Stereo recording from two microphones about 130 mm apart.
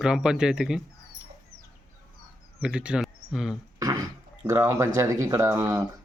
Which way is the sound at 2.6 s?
5° right (ahead or behind).